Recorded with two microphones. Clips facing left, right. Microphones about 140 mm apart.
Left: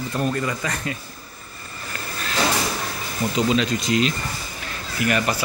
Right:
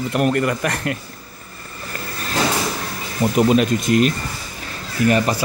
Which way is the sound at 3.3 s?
50° right (ahead or behind).